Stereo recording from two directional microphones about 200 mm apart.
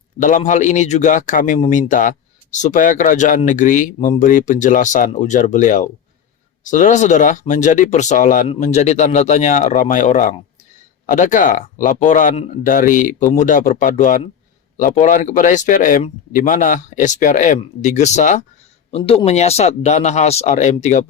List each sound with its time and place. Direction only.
0.2 s speech: 40° left (ahead or behind)